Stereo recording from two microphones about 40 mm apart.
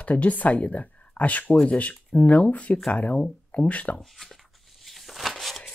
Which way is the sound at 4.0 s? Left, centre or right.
Centre.